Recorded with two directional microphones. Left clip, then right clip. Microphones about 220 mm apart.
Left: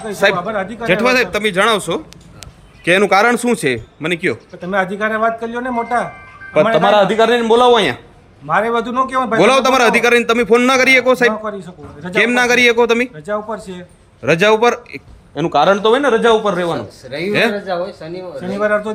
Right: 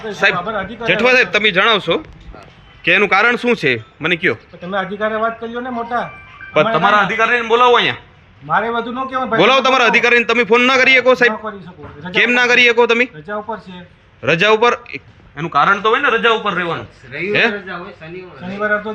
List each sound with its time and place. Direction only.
0.0 s a man's voice: 15° left (ahead or behind)
8.4 s a man's voice: 15° left (ahead or behind)
15.4 s a man's voice: 25° left (ahead or behind); by 18.9 s 10° left (ahead or behind)